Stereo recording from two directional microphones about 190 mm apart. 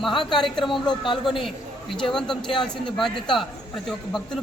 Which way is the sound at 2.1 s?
Centre (ahead or behind).